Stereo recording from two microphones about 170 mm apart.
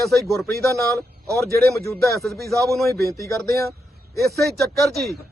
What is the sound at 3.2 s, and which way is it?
Speech, 15° left (ahead or behind).